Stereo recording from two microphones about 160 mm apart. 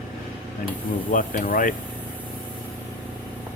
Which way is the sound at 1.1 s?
60° left (ahead or behind).